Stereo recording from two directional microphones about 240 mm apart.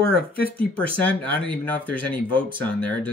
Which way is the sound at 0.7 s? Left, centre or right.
Centre.